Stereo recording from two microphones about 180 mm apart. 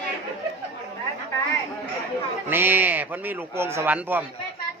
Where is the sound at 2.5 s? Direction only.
10° right (ahead or behind).